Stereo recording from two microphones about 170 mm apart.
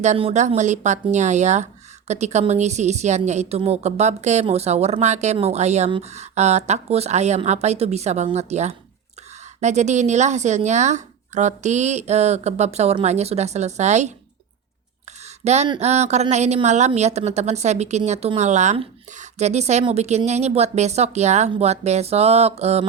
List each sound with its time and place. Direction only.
0.0 s a woman's voice: 40° right (ahead or behind)
15.4 s a woman's voice: 40° right (ahead or behind)